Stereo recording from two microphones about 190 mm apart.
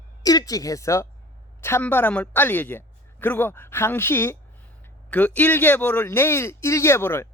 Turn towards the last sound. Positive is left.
turn(degrees=15)  # may be behind; listen again after turning